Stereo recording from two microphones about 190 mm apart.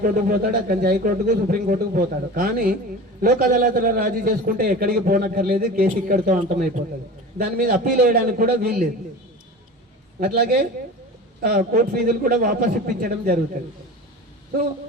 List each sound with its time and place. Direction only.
0.0 s a man's voice: 50° right (ahead or behind)
10.2 s a man's voice: 55° right (ahead or behind)